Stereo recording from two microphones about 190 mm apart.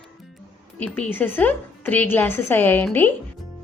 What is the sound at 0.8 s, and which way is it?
A woman's voice, 5° left (ahead or behind).